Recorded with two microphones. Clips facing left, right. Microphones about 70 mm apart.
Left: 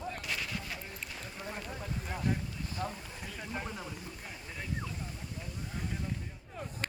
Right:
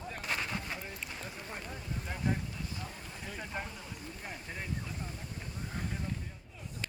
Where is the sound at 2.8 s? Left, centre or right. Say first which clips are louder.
Left 8 dB; left.